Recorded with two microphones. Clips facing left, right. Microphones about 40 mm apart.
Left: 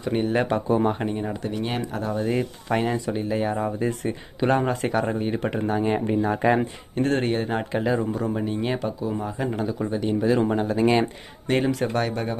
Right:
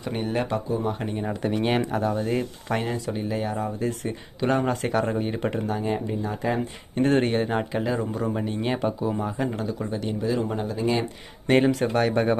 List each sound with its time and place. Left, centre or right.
0.0 s speech: centre
0.7 s speech: left
1.0 s speech: centre
1.4 s speech: right
1.9 s speech: centre
4.4 s speech: centre
5.7 s speech: left
6.9 s speech: centre
8.8 s speech: centre
9.1 s speech: centre
10.2 s speech: left
11.4 s speech: centre
12.1 s speech: right